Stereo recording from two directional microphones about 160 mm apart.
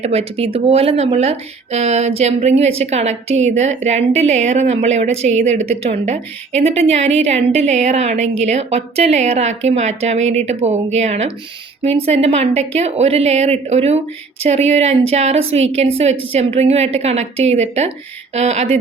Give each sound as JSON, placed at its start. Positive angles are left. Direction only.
{"t": 0.0, "sound": "a woman's voice", "side_deg": -40}